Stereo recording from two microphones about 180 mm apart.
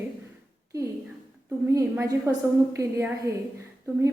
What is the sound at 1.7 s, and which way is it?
A woman's voice, 15° right (ahead or behind).